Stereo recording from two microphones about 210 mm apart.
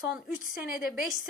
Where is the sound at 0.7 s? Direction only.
45° left (ahead or behind).